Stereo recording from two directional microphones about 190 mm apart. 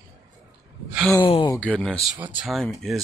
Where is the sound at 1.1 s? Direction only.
25° left (ahead or behind).